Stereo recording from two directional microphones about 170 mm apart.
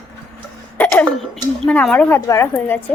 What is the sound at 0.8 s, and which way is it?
A woman's voice, 5° left (ahead or behind).